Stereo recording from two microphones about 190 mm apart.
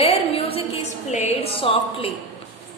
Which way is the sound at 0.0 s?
30° left (ahead or behind).